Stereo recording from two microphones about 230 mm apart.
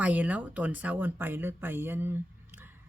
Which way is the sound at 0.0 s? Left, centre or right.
Centre.